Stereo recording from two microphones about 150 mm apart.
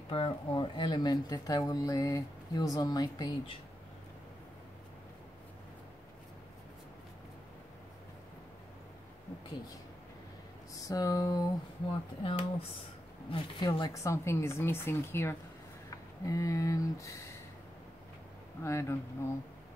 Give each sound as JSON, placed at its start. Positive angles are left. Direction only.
{"t": 0.1, "sound": "speech", "side_deg": 40}
{"t": 10.7, "sound": "speech", "side_deg": 25}
{"t": 12.2, "sound": "speech", "side_deg": 35}
{"t": 18.6, "sound": "speech", "side_deg": 15}